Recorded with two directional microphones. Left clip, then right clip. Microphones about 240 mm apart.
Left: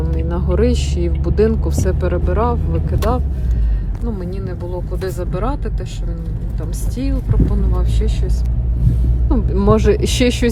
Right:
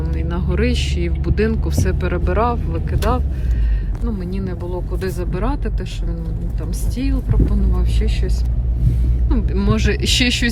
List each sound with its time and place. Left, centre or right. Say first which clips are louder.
0.3 s speech: left 4 dB; centre
6.9 s speech: left 1 dB; centre
9.3 s speech: left 7 dB; left